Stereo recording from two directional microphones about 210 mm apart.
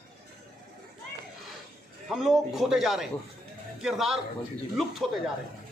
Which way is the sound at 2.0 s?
Centre (ahead or behind).